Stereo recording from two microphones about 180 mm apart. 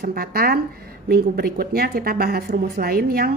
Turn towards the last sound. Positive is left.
turn(degrees=-60)  # may be behind; listen again after turning